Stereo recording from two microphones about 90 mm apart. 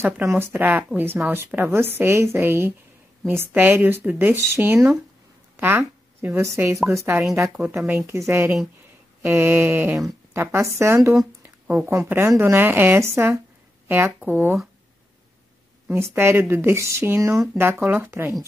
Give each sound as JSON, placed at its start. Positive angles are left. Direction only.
{"t": 0.0, "sound": "a woman's voice", "side_deg": -30}
{"t": 15.9, "sound": "a woman's voice", "side_deg": -30}